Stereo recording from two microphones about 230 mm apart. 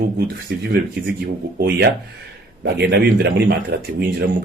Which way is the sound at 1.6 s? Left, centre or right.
Right.